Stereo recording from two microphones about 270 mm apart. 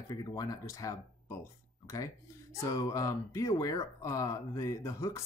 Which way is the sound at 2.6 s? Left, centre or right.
Centre.